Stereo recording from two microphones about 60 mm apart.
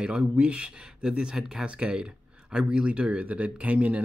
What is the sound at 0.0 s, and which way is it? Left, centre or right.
Speech, right.